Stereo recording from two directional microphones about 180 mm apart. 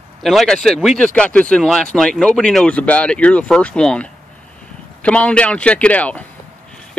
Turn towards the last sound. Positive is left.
turn(degrees=10)  # may be behind; listen again after turning